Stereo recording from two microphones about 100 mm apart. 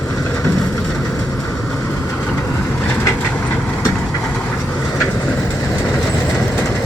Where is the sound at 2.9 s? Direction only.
20° left (ahead or behind).